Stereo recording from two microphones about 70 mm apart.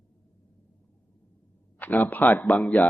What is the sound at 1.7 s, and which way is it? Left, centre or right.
Speech, left.